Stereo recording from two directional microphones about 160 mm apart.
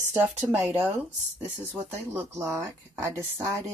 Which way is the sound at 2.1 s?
15° right (ahead or behind).